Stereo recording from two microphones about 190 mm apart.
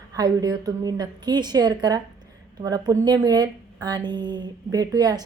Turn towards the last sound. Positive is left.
turn(degrees=-20)  # may be behind; listen again after turning